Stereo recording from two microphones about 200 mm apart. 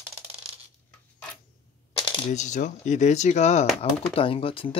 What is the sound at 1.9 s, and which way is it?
Speech, 25° left (ahead or behind).